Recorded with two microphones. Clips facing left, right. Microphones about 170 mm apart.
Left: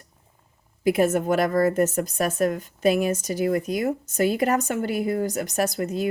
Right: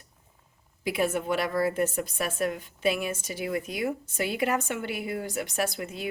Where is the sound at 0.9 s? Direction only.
45° left (ahead or behind).